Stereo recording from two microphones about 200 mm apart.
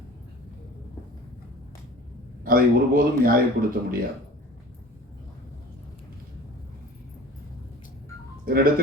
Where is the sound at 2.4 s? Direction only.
45° right (ahead or behind).